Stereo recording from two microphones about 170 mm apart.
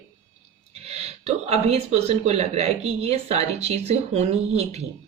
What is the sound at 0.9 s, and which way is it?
Speech, 40° right (ahead or behind).